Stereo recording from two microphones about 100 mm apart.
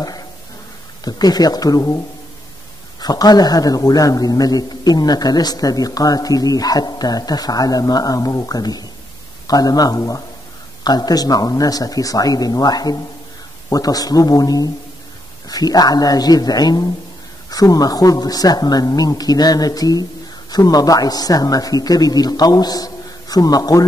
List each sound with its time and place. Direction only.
1.0 s a man's voice: 40° left (ahead or behind)
3.0 s a man's voice: 40° left (ahead or behind)